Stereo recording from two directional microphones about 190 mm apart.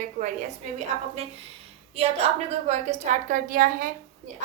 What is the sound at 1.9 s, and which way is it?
A child's voice, 35° right (ahead or behind).